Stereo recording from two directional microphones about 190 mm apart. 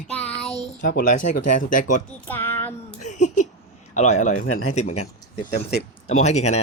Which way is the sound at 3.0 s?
40° left (ahead or behind).